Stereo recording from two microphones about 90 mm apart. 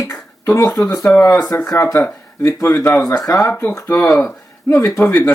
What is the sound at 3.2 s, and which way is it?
Speech, 35° left (ahead or behind).